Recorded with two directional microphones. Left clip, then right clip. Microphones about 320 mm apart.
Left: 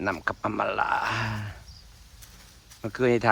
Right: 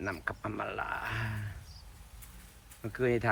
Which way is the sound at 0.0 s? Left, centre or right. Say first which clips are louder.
Left 9 dB; centre.